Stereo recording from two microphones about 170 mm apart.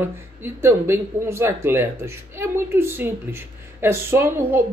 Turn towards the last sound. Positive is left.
turn(degrees=-15)  # may be behind; listen again after turning